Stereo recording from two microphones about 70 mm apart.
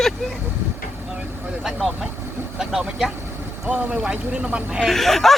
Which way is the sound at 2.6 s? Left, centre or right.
Centre.